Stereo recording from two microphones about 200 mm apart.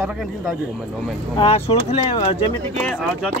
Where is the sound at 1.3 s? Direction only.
30° left (ahead or behind).